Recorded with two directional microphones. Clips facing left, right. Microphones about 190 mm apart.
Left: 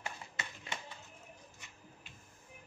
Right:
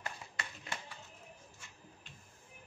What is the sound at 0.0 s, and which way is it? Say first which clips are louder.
Clapping: even; 20° left (ahead or behind).